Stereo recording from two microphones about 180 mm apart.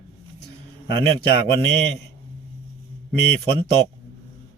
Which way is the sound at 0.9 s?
30° right (ahead or behind).